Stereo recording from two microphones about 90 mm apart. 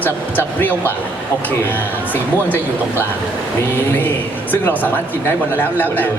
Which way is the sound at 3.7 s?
20° left (ahead or behind).